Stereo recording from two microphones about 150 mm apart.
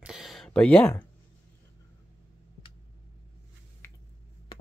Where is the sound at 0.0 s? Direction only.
Centre (ahead or behind).